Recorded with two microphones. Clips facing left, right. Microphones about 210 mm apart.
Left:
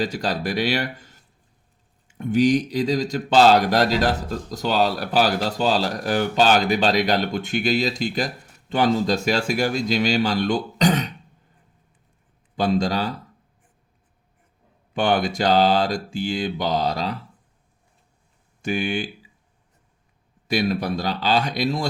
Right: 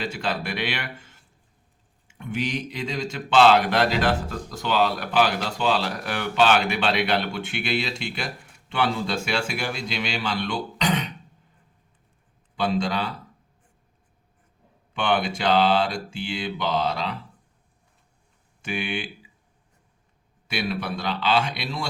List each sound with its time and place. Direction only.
0.0 s speech: 40° left (ahead or behind)
12.5 s speech: 40° left (ahead or behind)
14.9 s speech: 40° left (ahead or behind)
18.6 s speech: 40° left (ahead or behind)
20.5 s speech: 40° left (ahead or behind)